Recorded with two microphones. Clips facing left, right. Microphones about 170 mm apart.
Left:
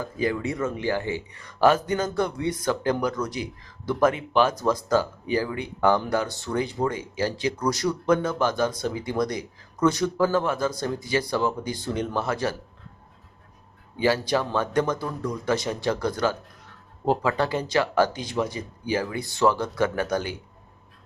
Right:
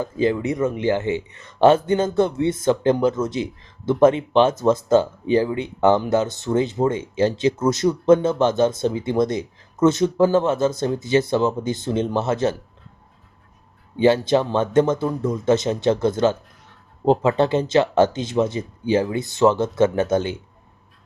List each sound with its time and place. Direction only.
0.0 s speech: 25° right (ahead or behind)
14.0 s speech: 25° right (ahead or behind)